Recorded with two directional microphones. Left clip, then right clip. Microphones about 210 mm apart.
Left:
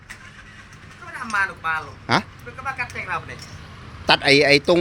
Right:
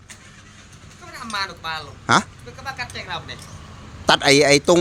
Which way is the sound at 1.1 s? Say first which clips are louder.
Left 4 dB; 15° right (ahead or behind).